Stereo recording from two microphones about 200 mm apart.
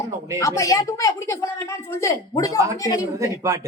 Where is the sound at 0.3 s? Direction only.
15° left (ahead or behind).